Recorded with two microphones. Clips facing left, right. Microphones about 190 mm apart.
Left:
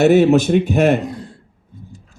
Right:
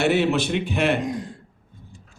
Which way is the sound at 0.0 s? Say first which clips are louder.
Left 9 dB; 45° left (ahead or behind).